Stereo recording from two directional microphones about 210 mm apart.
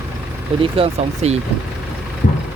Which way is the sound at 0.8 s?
30° right (ahead or behind).